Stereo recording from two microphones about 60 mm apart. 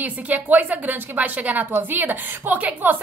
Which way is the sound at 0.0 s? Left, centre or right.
Right.